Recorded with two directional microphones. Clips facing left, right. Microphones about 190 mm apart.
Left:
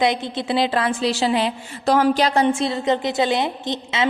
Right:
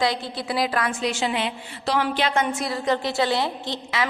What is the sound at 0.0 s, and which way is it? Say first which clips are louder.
A woman's voice: left 4 dB; 20° left (ahead or behind).